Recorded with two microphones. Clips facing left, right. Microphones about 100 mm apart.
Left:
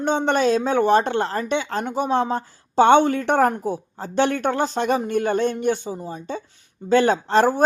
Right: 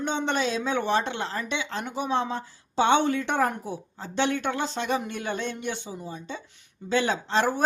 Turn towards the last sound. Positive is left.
turn(degrees=45)  # may be behind; listen again after turning